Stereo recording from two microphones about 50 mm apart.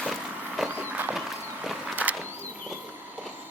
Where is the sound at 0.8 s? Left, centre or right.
Right.